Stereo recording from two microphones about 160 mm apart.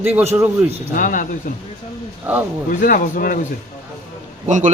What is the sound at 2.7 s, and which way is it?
Speech, 60° left (ahead or behind).